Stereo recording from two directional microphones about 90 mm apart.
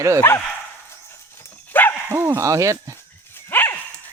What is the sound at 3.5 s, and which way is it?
Dog, 25° left (ahead or behind).